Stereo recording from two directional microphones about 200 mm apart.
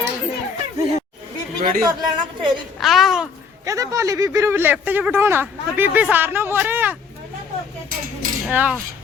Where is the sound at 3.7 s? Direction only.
15° right (ahead or behind).